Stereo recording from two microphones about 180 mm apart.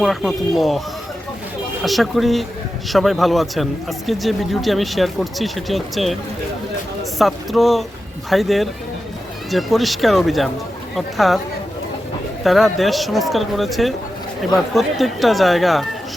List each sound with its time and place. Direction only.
0.0 s speech: centre (ahead or behind)
1.8 s speech: centre (ahead or behind)
7.2 s speech: centre (ahead or behind)
12.4 s speech: centre (ahead or behind)